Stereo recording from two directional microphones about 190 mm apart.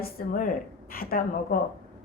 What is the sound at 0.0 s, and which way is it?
A woman's voice, 50° left (ahead or behind).